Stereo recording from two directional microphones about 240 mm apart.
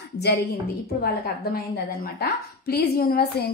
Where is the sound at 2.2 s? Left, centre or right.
Left.